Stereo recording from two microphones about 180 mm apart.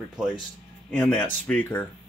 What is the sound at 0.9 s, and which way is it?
Speech, 10° left (ahead or behind).